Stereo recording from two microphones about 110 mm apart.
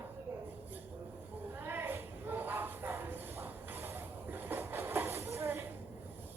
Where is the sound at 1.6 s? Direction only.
20° right (ahead or behind).